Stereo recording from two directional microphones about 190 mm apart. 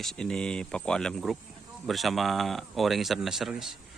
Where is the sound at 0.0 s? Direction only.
5° left (ahead or behind).